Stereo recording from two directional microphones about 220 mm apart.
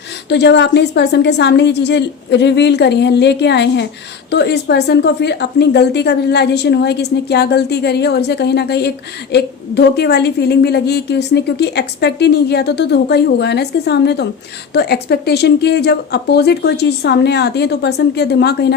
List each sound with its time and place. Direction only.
0.3 s a woman's voice: 50° left (ahead or behind)